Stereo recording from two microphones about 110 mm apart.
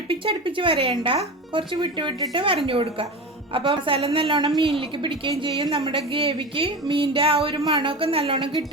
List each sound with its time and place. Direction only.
0.1 s speech: 55° right (ahead or behind)
5.7 s speech: 60° right (ahead or behind)